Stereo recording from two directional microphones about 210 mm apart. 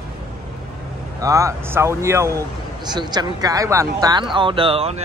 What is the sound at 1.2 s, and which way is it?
Speech, 15° right (ahead or behind).